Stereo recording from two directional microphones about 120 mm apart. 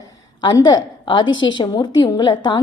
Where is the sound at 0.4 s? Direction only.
35° left (ahead or behind).